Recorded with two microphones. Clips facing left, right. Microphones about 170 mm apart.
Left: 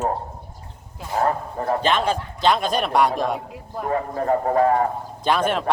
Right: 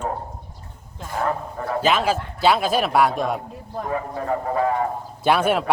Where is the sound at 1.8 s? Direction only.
5° right (ahead or behind).